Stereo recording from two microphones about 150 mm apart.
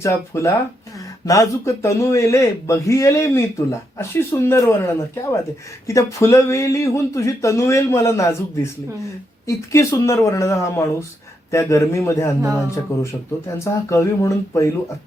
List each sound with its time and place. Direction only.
0.0 s a man's voice: 20° left (ahead or behind)